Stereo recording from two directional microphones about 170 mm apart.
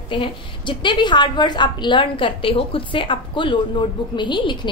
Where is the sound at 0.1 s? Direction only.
30° left (ahead or behind).